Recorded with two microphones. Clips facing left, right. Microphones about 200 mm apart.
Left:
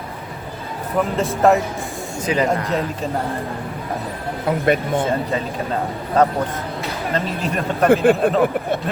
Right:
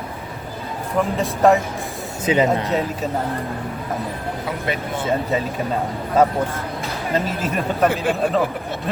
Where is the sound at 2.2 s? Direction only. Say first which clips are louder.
Right 2 dB; 20° right (ahead or behind).